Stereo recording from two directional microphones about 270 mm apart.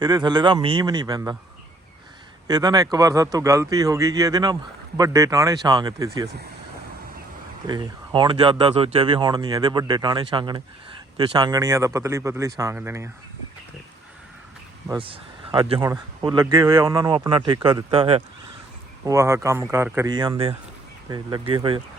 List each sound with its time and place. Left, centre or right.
0.0 s speech: centre
2.5 s speech: centre
7.7 s speech: centre
14.8 s speech: centre
19.0 s speech: centre